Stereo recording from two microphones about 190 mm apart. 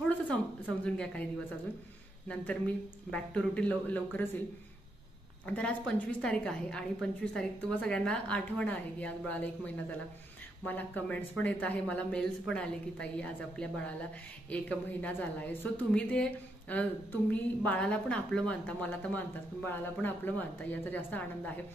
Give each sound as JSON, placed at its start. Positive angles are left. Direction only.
{"t": 0.8, "sound": "a woman's voice", "side_deg": 5}
{"t": 2.2, "sound": "a woman's voice", "side_deg": 5}
{"t": 5.5, "sound": "a woman's voice", "side_deg": 5}